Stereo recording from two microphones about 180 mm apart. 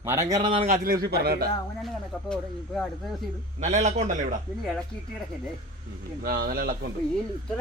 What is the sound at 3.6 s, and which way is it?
Speech, 40° right (ahead or behind).